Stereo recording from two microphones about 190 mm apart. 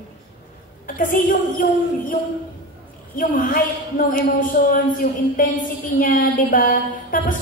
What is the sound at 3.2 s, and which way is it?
A woman's voice, 45° left (ahead or behind).